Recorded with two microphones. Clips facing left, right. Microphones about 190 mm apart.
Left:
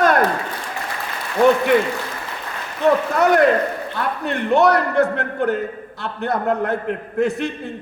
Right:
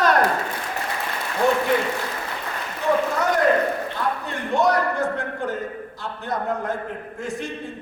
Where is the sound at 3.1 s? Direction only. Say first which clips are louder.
Left 5 dB; 65° left (ahead or behind).